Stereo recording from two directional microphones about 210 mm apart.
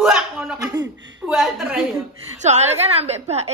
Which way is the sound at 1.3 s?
Centre (ahead or behind).